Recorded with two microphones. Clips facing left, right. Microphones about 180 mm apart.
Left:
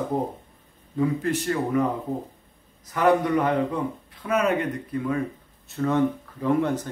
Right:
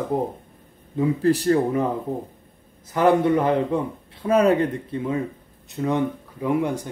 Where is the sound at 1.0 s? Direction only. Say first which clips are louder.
Right 4 dB; 35° right (ahead or behind).